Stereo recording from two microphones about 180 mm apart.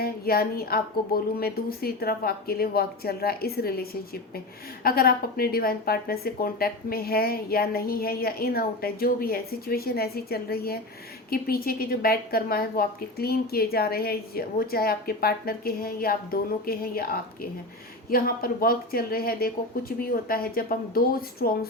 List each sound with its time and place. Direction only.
0.0 s a woman's voice: 60° left (ahead or behind)